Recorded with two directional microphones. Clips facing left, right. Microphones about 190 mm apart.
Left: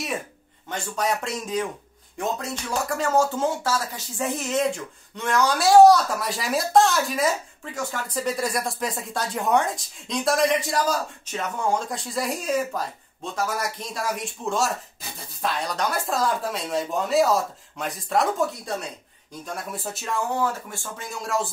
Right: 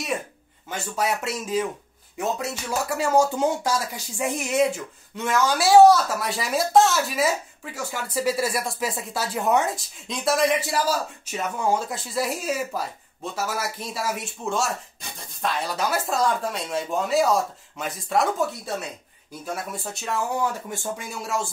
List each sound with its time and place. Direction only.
0.7 s speech: 5° right (ahead or behind)
20.7 s speech: 20° right (ahead or behind)
21.2 s speech: centre (ahead or behind)